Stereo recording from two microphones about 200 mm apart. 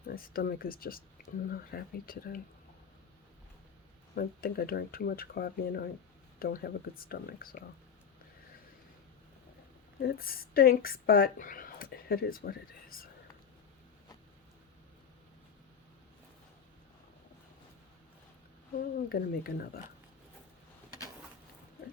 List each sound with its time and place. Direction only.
0.0 s speech: 45° left (ahead or behind)
4.1 s speech: 50° left (ahead or behind)
10.0 s a woman's voice: 50° left (ahead or behind)
18.9 s speech: 50° left (ahead or behind)